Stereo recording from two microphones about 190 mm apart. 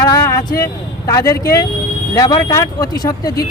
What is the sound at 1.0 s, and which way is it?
Speech, 20° left (ahead or behind).